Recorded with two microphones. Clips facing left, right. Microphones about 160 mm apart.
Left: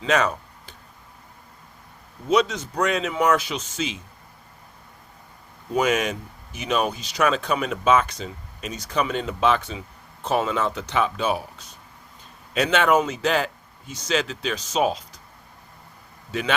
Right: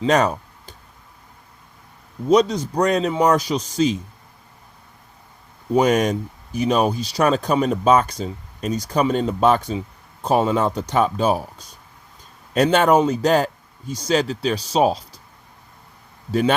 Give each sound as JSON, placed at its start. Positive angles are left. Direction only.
{"t": 0.0, "sound": "a sound", "side_deg": -35}
{"t": 2.3, "sound": "speech", "side_deg": -35}
{"t": 5.7, "sound": "speech", "side_deg": -40}
{"t": 16.3, "sound": "speech", "side_deg": -40}